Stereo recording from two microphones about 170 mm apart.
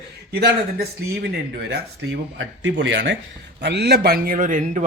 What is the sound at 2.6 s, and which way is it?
A man's voice, 90° right.